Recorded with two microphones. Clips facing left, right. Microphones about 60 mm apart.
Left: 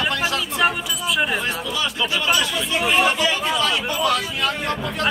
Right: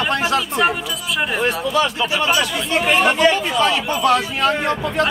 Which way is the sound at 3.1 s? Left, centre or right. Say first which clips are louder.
Right 6 dB; right.